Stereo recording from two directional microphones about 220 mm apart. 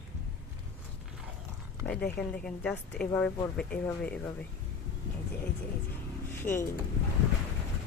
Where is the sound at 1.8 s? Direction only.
5° left (ahead or behind).